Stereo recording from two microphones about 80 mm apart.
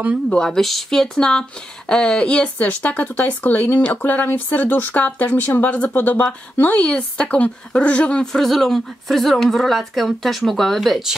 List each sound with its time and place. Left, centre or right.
0.3 s speech: centre